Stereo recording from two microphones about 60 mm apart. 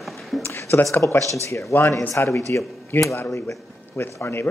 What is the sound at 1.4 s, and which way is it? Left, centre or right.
A man's voice, left.